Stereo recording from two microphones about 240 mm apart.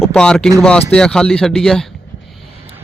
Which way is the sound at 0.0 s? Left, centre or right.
Centre.